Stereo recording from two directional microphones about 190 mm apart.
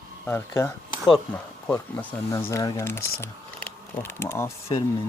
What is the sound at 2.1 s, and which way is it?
Speech, 15° left (ahead or behind).